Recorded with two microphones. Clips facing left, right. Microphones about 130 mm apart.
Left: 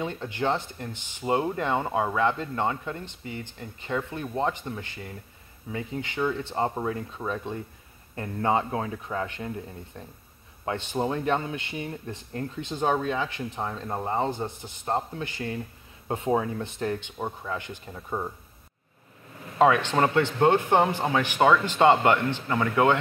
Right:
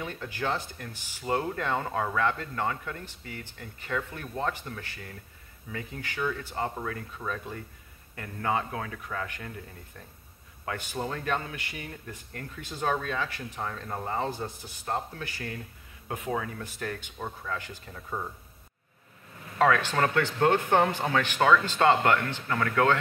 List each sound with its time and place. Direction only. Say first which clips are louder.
0.0 s speech: left 5 dB; 20° left (ahead or behind)
19.6 s speech: left 3 dB; 20° left (ahead or behind)